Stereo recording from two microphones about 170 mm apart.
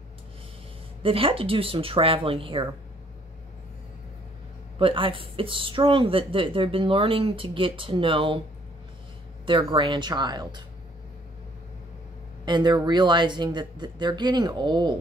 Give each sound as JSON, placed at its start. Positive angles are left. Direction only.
{"t": 1.0, "sound": "speech", "side_deg": -35}
{"t": 4.7, "sound": "speech", "side_deg": -30}
{"t": 9.5, "sound": "speech", "side_deg": -30}
{"t": 12.4, "sound": "speech", "side_deg": -25}